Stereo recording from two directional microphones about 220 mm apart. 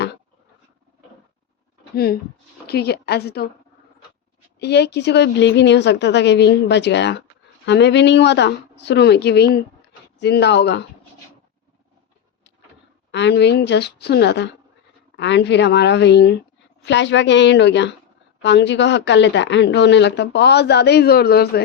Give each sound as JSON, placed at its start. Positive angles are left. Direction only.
{"t": 2.6, "sound": "speech", "side_deg": 45}
{"t": 4.6, "sound": "speech", "side_deg": 50}
{"t": 13.1, "sound": "speech", "side_deg": 50}